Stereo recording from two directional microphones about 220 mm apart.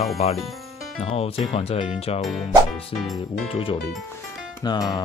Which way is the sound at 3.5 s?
25° left (ahead or behind).